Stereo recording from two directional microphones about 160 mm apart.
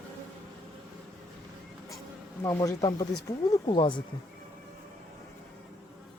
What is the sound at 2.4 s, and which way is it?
Speech, 20° left (ahead or behind).